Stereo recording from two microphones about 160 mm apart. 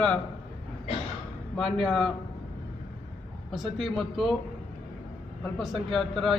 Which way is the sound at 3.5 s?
Centre (ahead or behind).